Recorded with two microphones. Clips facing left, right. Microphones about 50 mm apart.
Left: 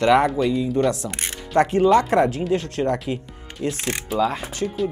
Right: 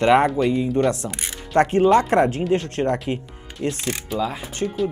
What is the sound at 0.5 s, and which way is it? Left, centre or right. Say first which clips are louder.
Speech: right 1 dB; right.